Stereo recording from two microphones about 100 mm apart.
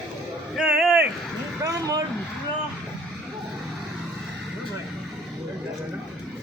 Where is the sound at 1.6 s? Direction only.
35° right (ahead or behind).